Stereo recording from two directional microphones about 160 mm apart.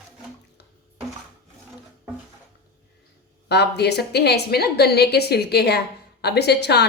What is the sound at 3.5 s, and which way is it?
A woman's voice, 90° left.